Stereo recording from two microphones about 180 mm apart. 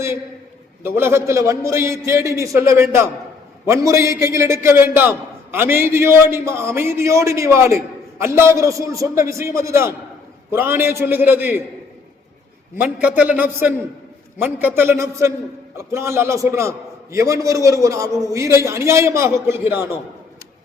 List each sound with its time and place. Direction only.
0.8 s a man's voice: 15° right (ahead or behind)
12.7 s a man's voice: 10° right (ahead or behind)